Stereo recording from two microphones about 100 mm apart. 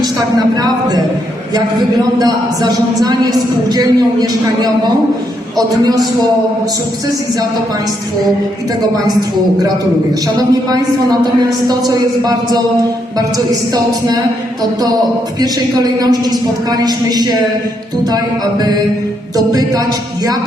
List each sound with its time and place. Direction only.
0.0 s a sound: 45° right (ahead or behind)
2.1 s a woman's voice: 45° right (ahead or behind)
10.3 s a woman's voice: 40° right (ahead or behind)
19.4 s a woman's voice: 40° right (ahead or behind)